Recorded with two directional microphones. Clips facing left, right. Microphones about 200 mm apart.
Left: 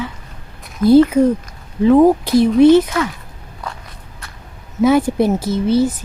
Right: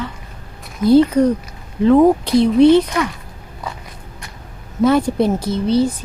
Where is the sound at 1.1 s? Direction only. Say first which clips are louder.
Left 1 dB; 5° left (ahead or behind).